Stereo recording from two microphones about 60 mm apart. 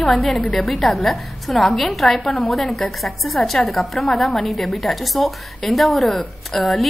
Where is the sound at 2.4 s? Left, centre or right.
Centre.